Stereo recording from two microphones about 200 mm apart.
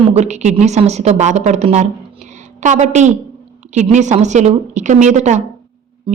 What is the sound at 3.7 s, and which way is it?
A woman's voice, 35° right (ahead or behind).